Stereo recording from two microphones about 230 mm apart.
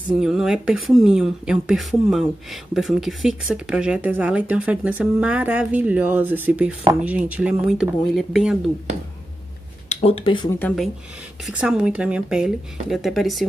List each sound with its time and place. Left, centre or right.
0.2 s speech: centre
9.8 s speech: left
11.4 s speech: centre